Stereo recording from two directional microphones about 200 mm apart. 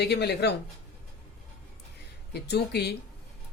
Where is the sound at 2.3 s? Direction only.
55° left (ahead or behind).